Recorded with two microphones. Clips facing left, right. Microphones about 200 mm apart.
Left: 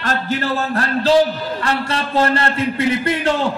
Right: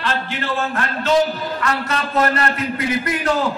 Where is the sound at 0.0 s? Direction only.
40° left (ahead or behind).